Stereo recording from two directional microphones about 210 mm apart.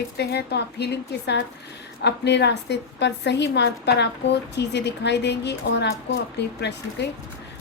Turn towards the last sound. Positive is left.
turn(degrees=55)  # may be behind; listen again after turning